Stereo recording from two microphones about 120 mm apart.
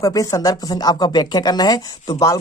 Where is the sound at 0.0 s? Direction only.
30° left (ahead or behind).